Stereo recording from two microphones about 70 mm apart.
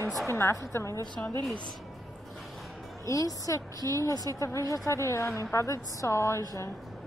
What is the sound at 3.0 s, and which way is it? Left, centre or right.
A woman's voice, left.